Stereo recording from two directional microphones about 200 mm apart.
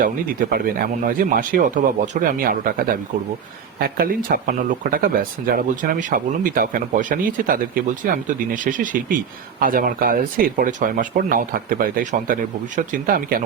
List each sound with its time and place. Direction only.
0.0 s speech: 45° right (ahead or behind)